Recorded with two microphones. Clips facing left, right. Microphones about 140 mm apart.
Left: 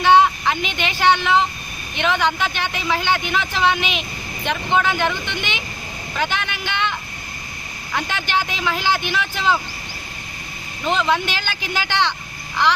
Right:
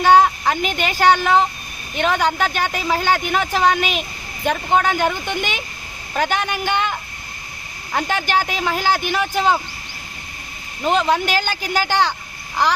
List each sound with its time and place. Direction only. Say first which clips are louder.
0.0 s speech: right 1 dB; 40° right (ahead or behind)
7.9 s speech: right 3 dB; 45° right (ahead or behind)
10.8 s speech: right 2 dB; 40° right (ahead or behind)